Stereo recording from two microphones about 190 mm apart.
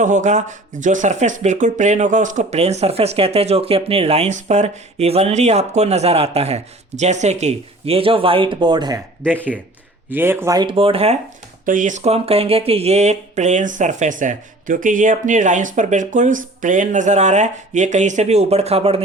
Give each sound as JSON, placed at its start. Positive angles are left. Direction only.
{"t": 0.0, "sound": "speech", "side_deg": -40}
{"t": 9.2, "sound": "speech", "side_deg": 5}
{"t": 10.1, "sound": "speech", "side_deg": -10}
{"t": 11.6, "sound": "speech", "side_deg": -45}